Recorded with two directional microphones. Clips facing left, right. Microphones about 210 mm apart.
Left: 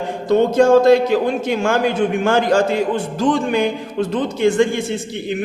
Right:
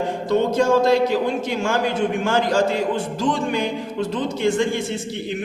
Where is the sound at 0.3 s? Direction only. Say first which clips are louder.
Left 6 dB; 55° left (ahead or behind).